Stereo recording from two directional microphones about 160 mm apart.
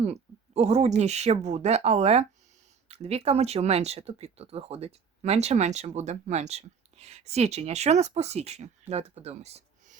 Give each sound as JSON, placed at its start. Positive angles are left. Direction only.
{"t": 0.0, "sound": "speech", "side_deg": -40}